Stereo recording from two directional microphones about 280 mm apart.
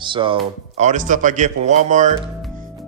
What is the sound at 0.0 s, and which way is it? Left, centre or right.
Speech, centre.